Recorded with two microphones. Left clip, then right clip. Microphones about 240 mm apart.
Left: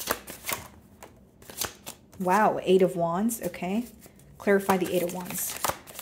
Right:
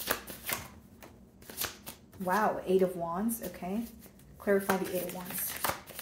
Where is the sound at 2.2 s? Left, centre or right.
Left.